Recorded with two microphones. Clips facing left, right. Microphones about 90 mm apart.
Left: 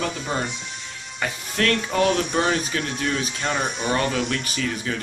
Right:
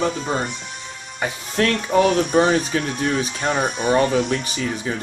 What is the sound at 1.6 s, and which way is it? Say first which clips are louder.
Speech: right 4 dB; 25° right (ahead or behind).